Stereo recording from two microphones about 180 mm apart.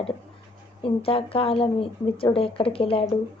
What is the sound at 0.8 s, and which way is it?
A woman's voice, 30° left (ahead or behind).